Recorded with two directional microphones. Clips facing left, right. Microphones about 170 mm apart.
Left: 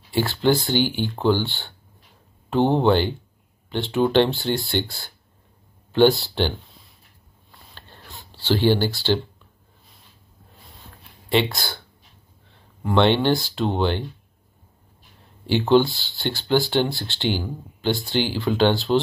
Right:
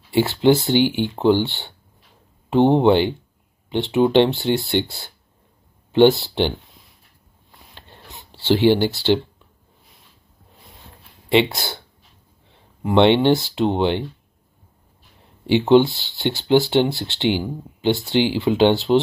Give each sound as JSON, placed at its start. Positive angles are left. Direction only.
{"t": 0.1, "sound": "speech", "side_deg": -20}
{"t": 7.7, "sound": "a sound", "side_deg": -20}
{"t": 8.6, "sound": "speech", "side_deg": -20}
{"t": 11.2, "sound": "speech", "side_deg": -25}
{"t": 12.8, "sound": "speech", "side_deg": -20}
{"t": 15.6, "sound": "speech", "side_deg": -20}